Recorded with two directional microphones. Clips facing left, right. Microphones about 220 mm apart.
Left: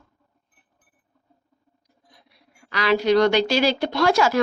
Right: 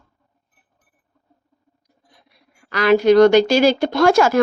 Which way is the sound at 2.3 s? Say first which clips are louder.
Right 4 dB; 50° right (ahead or behind).